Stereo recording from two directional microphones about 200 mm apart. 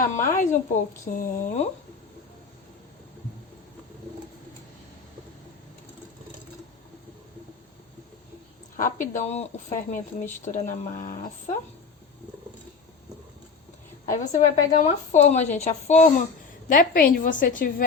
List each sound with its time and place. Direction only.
0.0 s a woman's voice: 40° left (ahead or behind)
8.7 s a woman's voice: 40° left (ahead or behind)
14.0 s a woman's voice: 40° left (ahead or behind)